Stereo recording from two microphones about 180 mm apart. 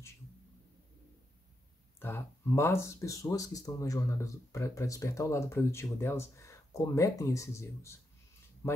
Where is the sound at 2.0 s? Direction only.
10° left (ahead or behind).